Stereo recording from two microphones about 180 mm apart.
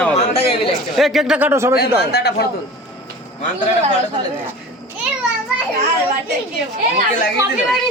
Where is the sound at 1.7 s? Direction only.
65° left (ahead or behind).